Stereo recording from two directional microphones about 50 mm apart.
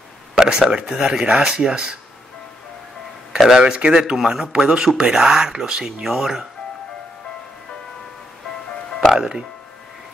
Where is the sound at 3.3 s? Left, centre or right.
Centre.